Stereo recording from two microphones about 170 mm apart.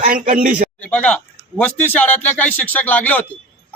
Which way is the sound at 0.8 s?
10° left (ahead or behind).